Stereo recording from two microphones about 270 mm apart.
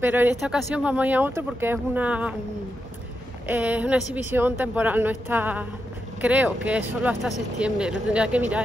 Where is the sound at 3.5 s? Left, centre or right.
Centre.